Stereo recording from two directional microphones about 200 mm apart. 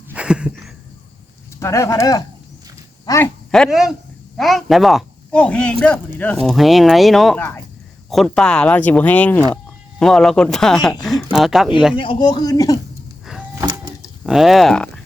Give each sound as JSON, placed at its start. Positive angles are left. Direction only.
{"t": 0.1, "sound": "a sound", "side_deg": -5}
{"t": 1.5, "sound": "speech", "side_deg": 15}
{"t": 3.5, "sound": "speech", "side_deg": 0}
{"t": 11.9, "sound": "speech", "side_deg": 25}
{"t": 13.6, "sound": "a sound", "side_deg": -20}
{"t": 14.3, "sound": "speech", "side_deg": 0}